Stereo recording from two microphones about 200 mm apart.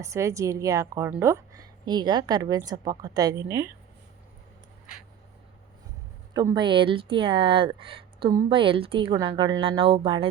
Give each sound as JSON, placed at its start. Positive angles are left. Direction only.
{"t": 0.0, "sound": "a woman's voice", "side_deg": -15}
{"t": 6.3, "sound": "speech", "side_deg": -20}